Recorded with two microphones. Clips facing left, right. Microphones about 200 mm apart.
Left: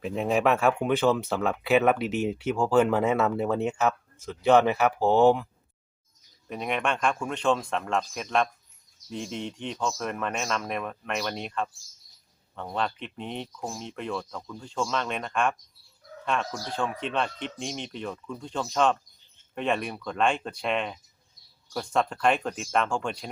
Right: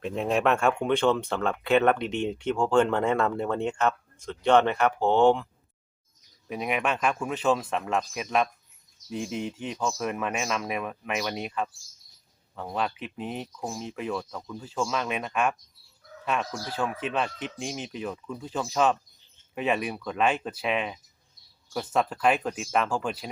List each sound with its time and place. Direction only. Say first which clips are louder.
0.0 s speech: left 1 dB; centre (ahead or behind)
6.5 s speech: right 1 dB; 5° right (ahead or behind)